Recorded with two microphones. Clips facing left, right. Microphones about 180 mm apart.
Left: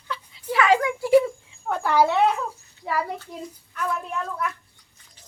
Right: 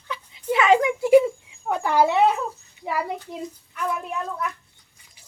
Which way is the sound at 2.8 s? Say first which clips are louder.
Even; 15° right (ahead or behind).